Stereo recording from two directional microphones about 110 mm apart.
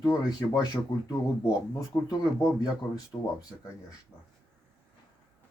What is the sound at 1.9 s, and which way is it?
Speech, 30° left (ahead or behind).